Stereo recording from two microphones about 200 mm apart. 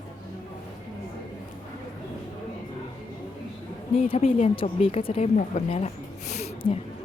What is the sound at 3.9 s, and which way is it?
A woman's voice, 30° left (ahead or behind).